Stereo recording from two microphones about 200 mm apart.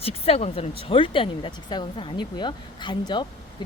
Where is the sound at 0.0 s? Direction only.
30° left (ahead or behind).